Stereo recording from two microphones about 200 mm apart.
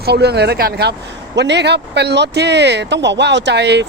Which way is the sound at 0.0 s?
55° right (ahead or behind).